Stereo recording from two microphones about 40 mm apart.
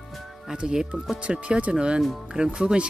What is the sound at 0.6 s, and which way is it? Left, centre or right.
Speech, right.